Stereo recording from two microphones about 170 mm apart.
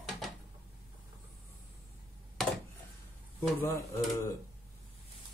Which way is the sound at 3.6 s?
15° left (ahead or behind).